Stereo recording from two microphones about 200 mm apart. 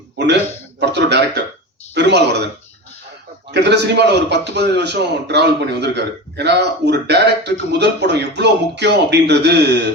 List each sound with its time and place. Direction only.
0.8 s a man's voice: 60° right (ahead or behind)
3.5 s a man's voice: 60° right (ahead or behind)